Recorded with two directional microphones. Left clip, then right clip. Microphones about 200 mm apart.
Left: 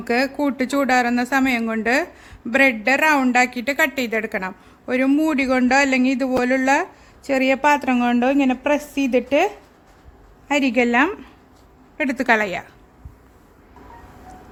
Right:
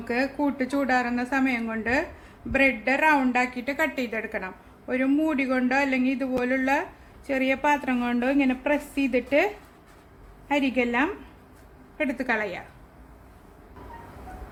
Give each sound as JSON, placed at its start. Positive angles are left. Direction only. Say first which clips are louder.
{"t": 0.0, "sound": "a woman's voice", "louder": "left 6 dB", "side_deg": 55}
{"t": 10.5, "sound": "speech", "louder": "left 6 dB", "side_deg": 55}